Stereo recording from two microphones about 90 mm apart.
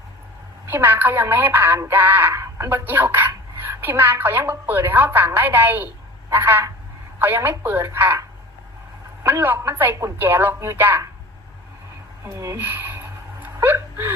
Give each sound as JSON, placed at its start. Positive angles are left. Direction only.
{"t": 0.7, "sound": "speech", "side_deg": -20}
{"t": 2.3, "sound": "a sound", "side_deg": -35}
{"t": 2.6, "sound": "speech", "side_deg": -25}
{"t": 9.2, "sound": "speech", "side_deg": -25}
{"t": 12.2, "sound": "speech", "side_deg": -35}
{"t": 12.5, "sound": "a sound", "side_deg": -25}
{"t": 13.4, "sound": "whimper", "side_deg": -25}